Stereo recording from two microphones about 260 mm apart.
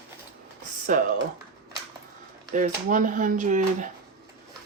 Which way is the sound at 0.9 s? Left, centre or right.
Right.